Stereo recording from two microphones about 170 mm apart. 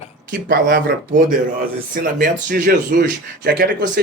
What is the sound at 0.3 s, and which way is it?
Speech, 70° right (ahead or behind).